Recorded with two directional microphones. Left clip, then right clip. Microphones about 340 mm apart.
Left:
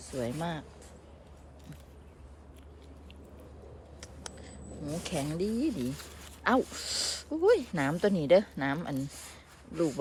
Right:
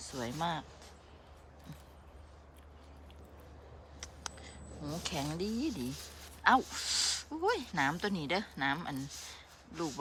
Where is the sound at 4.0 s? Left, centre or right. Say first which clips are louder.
Right 1 dB; centre.